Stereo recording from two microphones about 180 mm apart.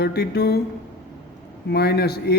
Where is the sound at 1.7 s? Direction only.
65° left (ahead or behind).